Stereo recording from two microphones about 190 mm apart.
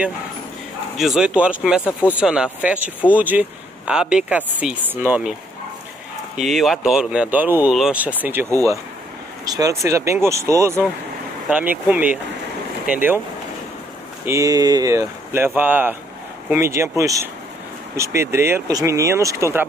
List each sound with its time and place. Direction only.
0.9 s speech: centre (ahead or behind)
6.3 s speech: centre (ahead or behind)
14.2 s speech: 15° right (ahead or behind)